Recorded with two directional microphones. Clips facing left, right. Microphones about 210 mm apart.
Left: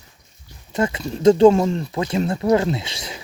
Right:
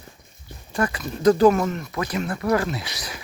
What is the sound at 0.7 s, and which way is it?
Speech, 25° left (ahead or behind).